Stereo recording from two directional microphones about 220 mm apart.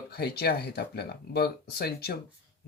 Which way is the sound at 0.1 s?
45° left (ahead or behind).